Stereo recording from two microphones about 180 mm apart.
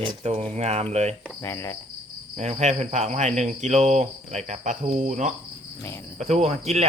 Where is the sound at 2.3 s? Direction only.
40° right (ahead or behind).